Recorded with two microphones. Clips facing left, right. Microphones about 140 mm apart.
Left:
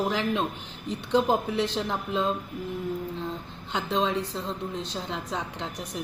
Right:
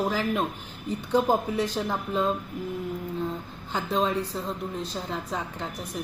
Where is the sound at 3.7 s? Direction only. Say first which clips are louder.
Right 1 dB; 5° right (ahead or behind).